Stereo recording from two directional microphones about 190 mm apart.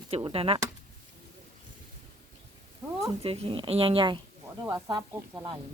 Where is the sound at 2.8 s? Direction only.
20° right (ahead or behind).